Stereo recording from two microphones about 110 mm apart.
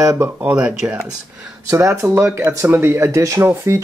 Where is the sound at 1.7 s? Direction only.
25° right (ahead or behind).